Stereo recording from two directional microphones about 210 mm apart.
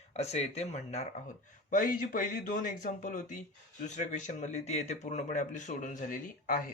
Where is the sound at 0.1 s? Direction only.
30° left (ahead or behind).